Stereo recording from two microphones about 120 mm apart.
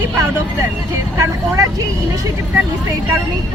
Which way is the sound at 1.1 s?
25° right (ahead or behind).